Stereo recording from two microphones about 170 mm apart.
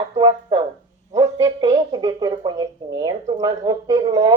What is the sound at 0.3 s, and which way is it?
A woman's voice, 30° right (ahead or behind).